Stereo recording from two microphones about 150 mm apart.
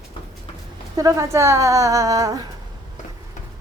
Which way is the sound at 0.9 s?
20° right (ahead or behind).